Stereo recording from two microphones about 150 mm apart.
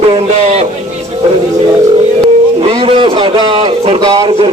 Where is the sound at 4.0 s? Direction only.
25° right (ahead or behind).